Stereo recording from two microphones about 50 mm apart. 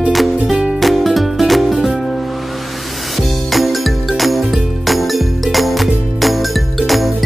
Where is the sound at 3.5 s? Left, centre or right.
Centre.